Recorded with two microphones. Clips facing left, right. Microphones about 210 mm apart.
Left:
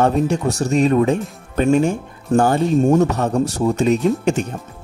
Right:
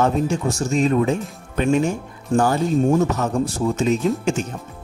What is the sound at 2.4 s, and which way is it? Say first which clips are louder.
Speech: left 3 dB; 30° left (ahead or behind).